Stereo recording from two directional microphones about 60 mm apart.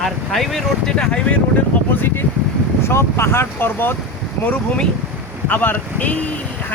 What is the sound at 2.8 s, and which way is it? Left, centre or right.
Speech, left.